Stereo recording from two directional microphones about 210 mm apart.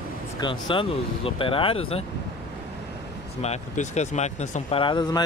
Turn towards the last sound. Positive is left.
turn(degrees=20)  # may be behind; listen again after turning